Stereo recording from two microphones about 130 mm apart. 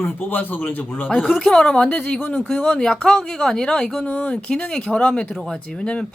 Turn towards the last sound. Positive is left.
turn(degrees=5)  # may be behind; listen again after turning